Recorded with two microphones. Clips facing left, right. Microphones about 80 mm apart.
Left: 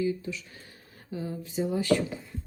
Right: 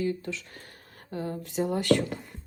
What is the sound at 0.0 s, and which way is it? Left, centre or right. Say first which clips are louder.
Speech: left 1 dB; right.